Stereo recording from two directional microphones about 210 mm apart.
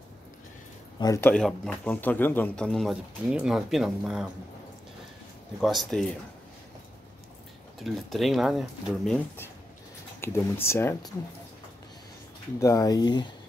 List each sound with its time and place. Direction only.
0.9 s speech: 15° left (ahead or behind)
1.3 s a man's voice: 5° left (ahead or behind)
5.6 s a man's voice: centre (ahead or behind)
7.8 s a man's voice: centre (ahead or behind)
12.5 s speech: 15° left (ahead or behind)